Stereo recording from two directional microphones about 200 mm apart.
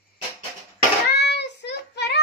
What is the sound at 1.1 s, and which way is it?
Child singing, 55° left (ahead or behind).